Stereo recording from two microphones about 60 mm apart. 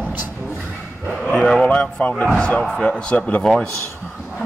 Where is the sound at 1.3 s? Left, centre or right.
Centre.